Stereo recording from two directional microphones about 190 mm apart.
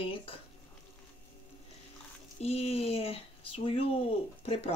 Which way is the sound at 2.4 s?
30° left (ahead or behind).